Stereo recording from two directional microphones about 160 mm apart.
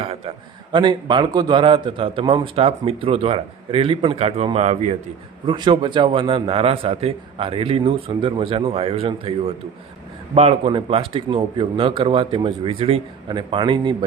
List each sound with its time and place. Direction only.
0.0 s a man's voice: 35° right (ahead or behind)
5.5 s a man's voice: 30° right (ahead or behind)